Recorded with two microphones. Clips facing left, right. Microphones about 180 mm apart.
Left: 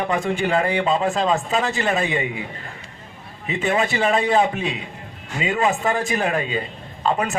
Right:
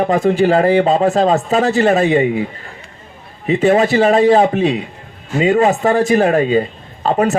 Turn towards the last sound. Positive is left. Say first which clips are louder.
# right 7 dB
turn(degrees=-40)  # may be behind; listen again after turning